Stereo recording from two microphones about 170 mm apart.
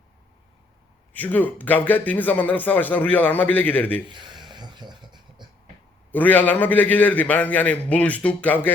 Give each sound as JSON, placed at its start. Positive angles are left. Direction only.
{"t": 1.1, "sound": "a man's voice", "side_deg": 10}
{"t": 4.5, "sound": "a sound", "side_deg": -25}
{"t": 6.1, "sound": "a man's voice", "side_deg": 10}